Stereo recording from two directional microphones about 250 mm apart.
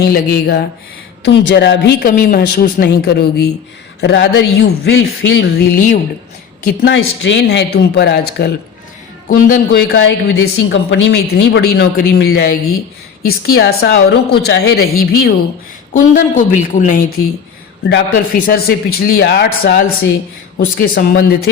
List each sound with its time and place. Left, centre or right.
0.0 s speech: left
9.9 s speech: left